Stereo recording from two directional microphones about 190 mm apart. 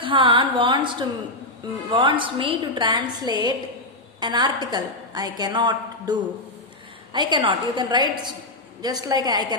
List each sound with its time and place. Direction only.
0.0 s a woman's voice: 25° right (ahead or behind)